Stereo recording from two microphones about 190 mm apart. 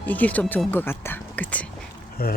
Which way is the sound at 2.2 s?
55° left (ahead or behind).